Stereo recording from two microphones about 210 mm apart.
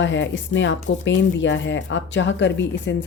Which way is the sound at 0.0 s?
60° left (ahead or behind).